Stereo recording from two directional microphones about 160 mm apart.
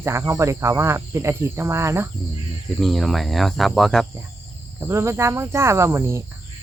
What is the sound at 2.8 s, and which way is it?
Speech, centre (ahead or behind).